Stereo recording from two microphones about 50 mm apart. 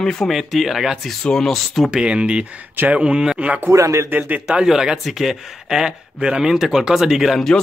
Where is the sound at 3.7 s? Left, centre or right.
Right.